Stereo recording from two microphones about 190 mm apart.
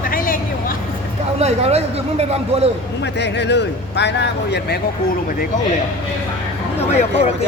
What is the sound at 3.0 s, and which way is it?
Speech, 65° left (ahead or behind).